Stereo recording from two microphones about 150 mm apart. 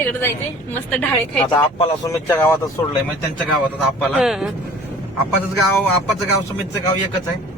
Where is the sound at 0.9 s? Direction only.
10° left (ahead or behind).